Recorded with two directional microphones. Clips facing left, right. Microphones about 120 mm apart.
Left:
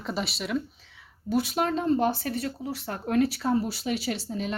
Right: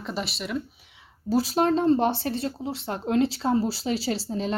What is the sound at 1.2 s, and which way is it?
Speech, 35° right (ahead or behind).